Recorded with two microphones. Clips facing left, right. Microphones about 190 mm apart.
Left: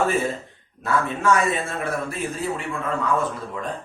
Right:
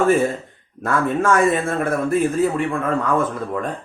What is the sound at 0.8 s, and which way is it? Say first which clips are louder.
Speech: right 4 dB; 50° right (ahead or behind).